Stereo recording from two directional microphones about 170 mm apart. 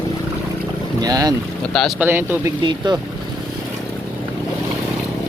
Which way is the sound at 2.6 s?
25° right (ahead or behind).